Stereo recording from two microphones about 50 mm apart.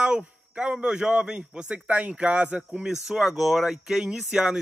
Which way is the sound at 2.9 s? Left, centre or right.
Centre.